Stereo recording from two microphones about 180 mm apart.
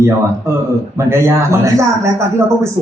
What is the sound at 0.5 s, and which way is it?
Speech, 15° right (ahead or behind).